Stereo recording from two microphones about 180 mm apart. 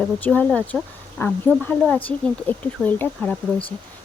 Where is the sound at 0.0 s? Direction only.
10° left (ahead or behind).